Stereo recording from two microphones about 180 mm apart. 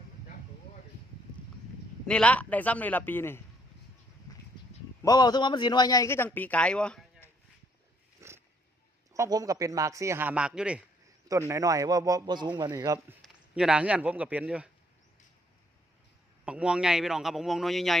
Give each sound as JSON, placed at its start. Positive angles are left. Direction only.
{"t": 2.0, "sound": "a man's voice", "side_deg": 5}
{"t": 5.0, "sound": "a man's voice", "side_deg": 20}
{"t": 8.2, "sound": "dog", "side_deg": -15}
{"t": 9.1, "sound": "speech", "side_deg": -20}
{"t": 11.3, "sound": "a man's voice", "side_deg": -15}
{"t": 13.2, "sound": "speech", "side_deg": -5}
{"t": 16.5, "sound": "speech", "side_deg": -5}